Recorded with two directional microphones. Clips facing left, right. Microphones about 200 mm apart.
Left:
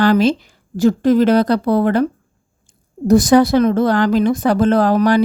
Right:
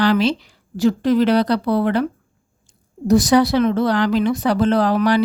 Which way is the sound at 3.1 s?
50° left (ahead or behind).